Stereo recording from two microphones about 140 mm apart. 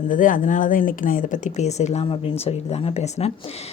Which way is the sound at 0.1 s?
70° left (ahead or behind).